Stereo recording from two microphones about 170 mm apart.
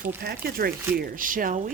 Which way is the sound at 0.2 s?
60° right (ahead or behind).